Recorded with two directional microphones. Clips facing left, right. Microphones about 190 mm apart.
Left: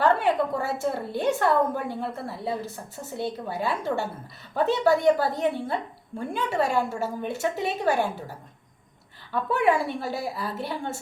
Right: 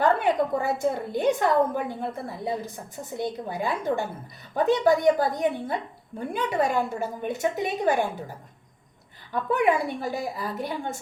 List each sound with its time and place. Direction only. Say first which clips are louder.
0.0 s a woman's voice: even; 15° right (ahead or behind)
9.3 s a woman's voice: even; 15° right (ahead or behind)